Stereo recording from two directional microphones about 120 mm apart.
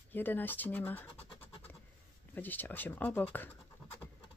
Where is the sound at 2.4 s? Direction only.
15° left (ahead or behind).